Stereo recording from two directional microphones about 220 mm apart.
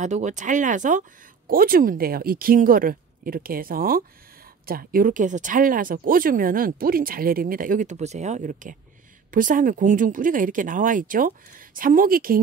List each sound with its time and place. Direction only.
0.0 s speech: 35° right (ahead or behind)